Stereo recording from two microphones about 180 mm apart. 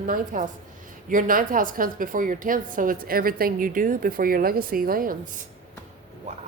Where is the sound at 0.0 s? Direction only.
45° right (ahead or behind).